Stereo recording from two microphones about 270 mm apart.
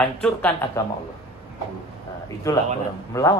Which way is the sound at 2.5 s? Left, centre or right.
Centre.